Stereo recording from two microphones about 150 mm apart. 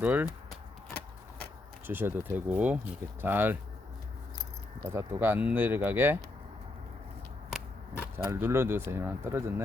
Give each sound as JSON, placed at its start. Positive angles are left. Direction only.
{"t": 0.0, "sound": "speech", "side_deg": -10}
{"t": 1.9, "sound": "speech", "side_deg": -15}
{"t": 4.8, "sound": "speech", "side_deg": -15}
{"t": 7.5, "sound": "a sound", "side_deg": -15}
{"t": 8.9, "sound": "speech", "side_deg": -15}